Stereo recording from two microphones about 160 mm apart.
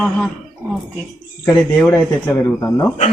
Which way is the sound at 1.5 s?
10° left (ahead or behind).